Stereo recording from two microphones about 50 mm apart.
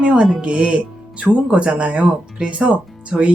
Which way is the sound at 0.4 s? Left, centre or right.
Right.